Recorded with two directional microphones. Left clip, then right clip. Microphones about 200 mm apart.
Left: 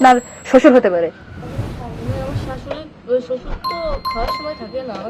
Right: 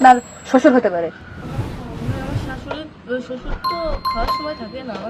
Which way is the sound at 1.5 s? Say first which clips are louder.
Left 1 dB; centre (ahead or behind).